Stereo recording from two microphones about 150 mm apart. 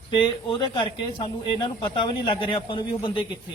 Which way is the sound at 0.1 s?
35° left (ahead or behind).